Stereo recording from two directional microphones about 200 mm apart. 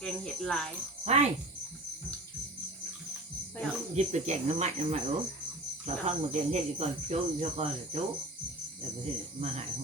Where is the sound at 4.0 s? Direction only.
35° right (ahead or behind).